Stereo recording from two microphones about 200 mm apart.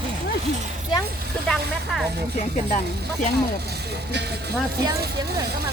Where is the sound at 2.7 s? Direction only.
40° left (ahead or behind).